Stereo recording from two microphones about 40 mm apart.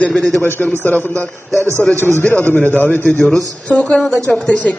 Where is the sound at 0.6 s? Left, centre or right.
Left.